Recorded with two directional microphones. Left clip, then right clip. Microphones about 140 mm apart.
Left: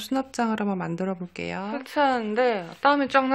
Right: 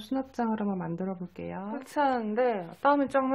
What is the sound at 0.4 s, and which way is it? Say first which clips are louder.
Speech: left 4 dB; 15° left (ahead or behind).